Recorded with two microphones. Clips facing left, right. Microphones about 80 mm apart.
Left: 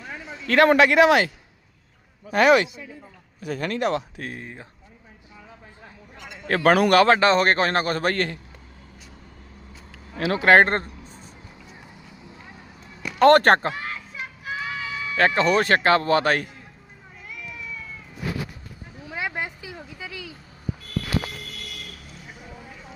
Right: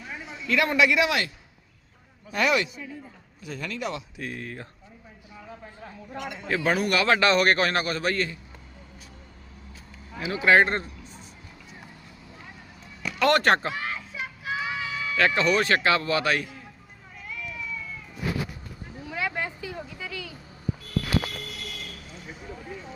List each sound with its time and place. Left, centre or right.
0.4 s speech: left
2.3 s speech: left
6.5 s speech: left
7.1 s a man's voice: left
10.2 s speech: left
13.1 s speech: left
13.9 s child singing: centre
15.4 s a man's voice: left
19.0 s vehicle: left; by 20.3 s centre
21.6 s vehicle: centre